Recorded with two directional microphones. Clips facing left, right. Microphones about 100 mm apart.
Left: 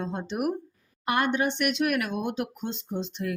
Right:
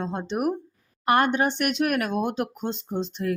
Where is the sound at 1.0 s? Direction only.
45° right (ahead or behind).